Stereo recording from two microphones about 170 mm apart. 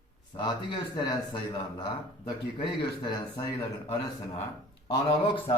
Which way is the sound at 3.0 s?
25° left (ahead or behind).